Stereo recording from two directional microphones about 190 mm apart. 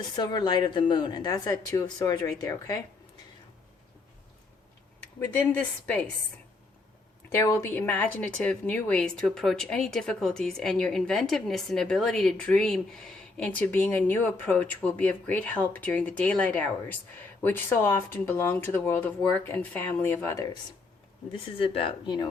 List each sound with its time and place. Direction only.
0.2 s speech: 20° left (ahead or behind)
5.2 s speech: 10° left (ahead or behind)
7.3 s a woman's voice: 15° left (ahead or behind)
21.3 s speech: 30° left (ahead or behind)